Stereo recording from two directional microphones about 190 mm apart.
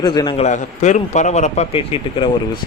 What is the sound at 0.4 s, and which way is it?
A man's voice, 40° left (ahead or behind).